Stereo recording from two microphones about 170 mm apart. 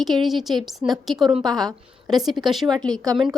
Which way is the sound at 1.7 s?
20° right (ahead or behind).